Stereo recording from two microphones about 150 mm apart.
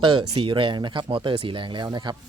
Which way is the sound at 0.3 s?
35° right (ahead or behind).